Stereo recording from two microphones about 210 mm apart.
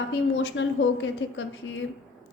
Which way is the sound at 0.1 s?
60° left (ahead or behind).